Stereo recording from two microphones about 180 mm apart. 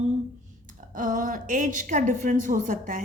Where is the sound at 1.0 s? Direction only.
45° right (ahead or behind).